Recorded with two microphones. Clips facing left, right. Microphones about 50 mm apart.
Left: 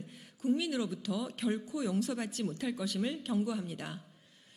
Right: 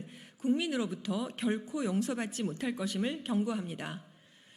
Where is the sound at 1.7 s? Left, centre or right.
Centre.